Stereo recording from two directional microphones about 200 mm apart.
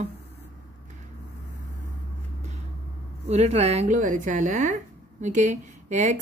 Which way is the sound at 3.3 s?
35° right (ahead or behind).